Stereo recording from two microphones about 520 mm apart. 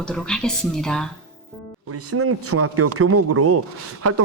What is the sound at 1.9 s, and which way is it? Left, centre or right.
Speech, right.